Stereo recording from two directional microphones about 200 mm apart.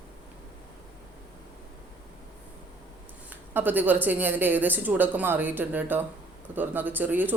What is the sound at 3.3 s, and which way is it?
Speech, 10° right (ahead or behind).